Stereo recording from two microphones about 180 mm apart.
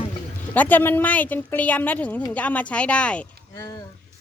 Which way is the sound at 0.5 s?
10° left (ahead or behind).